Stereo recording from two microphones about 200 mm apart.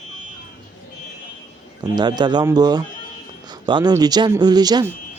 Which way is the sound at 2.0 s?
20° right (ahead or behind).